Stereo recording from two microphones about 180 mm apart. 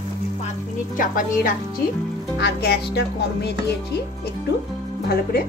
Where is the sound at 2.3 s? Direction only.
65° left (ahead or behind).